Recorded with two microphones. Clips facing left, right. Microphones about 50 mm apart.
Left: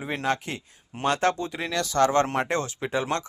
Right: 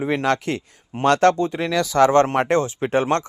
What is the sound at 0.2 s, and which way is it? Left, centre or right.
Speech, right.